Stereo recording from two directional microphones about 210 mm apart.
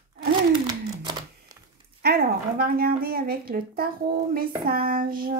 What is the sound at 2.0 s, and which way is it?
A woman's voice, 45° right (ahead or behind).